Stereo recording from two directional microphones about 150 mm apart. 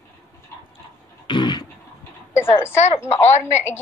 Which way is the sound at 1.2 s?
30° left (ahead or behind).